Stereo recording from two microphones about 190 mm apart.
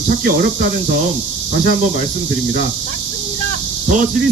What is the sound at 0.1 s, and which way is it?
Speech, 50° right (ahead or behind).